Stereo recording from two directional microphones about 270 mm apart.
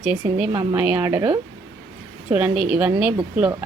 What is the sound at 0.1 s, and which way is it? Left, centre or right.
A woman's voice, centre.